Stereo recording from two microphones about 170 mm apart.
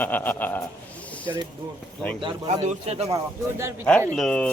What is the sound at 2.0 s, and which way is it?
Speech, 5° left (ahead or behind).